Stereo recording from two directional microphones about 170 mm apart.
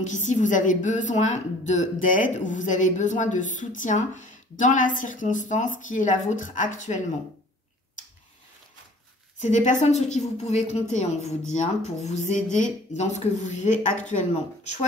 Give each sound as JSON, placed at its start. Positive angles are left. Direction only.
{"t": 0.0, "sound": "a woman's voice", "side_deg": 45}
{"t": 9.4, "sound": "a woman's voice", "side_deg": 45}